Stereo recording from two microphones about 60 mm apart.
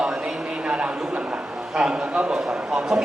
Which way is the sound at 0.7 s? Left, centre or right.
Centre.